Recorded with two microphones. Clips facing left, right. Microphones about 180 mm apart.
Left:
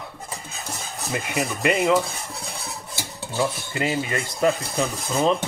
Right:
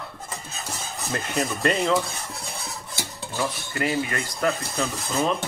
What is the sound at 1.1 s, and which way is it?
Speech, 10° left (ahead or behind).